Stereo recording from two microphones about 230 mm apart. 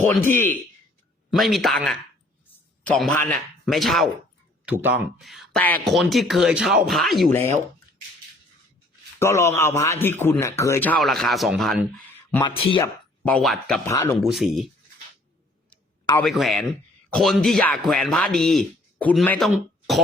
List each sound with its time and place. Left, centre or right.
0.1 s a man's voice: centre
9.1 s a man's voice: centre
12.4 s speech: left
13.2 s speech: centre
13.8 s a man's voice: centre
14.2 s speech: centre
16.2 s speech: centre